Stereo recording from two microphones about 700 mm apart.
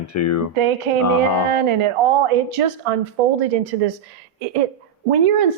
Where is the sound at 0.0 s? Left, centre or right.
Left.